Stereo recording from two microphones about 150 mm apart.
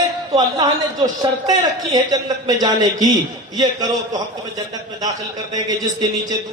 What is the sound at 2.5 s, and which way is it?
Speech, 25° right (ahead or behind).